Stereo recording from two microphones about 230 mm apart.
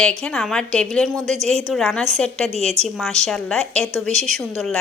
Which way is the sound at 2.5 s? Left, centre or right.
Right.